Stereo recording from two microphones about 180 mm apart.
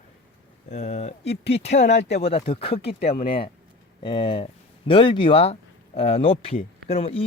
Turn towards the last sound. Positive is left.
turn(degrees=35)  # may be behind; listen again after turning